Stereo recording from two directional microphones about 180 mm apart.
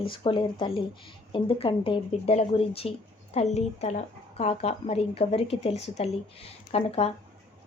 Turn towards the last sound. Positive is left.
turn(degrees=35)  # may be behind; listen again after turning